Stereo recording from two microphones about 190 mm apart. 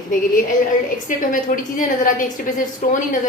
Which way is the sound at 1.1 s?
45° left (ahead or behind).